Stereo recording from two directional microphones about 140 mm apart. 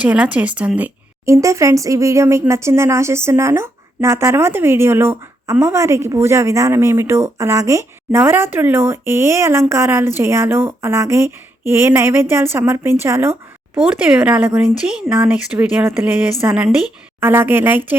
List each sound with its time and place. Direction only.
0.1 s speech: 10° right (ahead or behind)
1.2 s a woman's voice: 20° right (ahead or behind)
13.7 s speech: 5° right (ahead or behind)
17.2 s speech: 15° right (ahead or behind)